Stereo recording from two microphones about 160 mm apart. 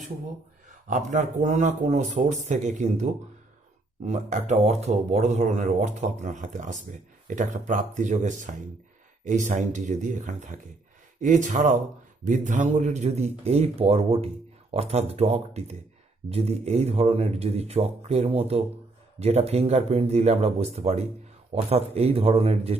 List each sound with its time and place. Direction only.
0.9 s speech: 50° right (ahead or behind)